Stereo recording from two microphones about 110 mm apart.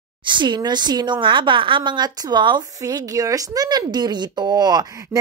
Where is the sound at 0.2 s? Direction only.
45° right (ahead or behind).